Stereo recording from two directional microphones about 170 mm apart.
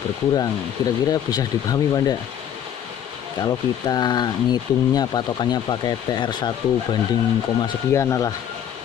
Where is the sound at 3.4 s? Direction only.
25° left (ahead or behind).